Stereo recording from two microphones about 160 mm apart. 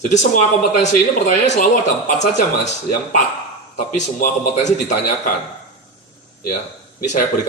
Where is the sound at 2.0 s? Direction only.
50° left (ahead or behind).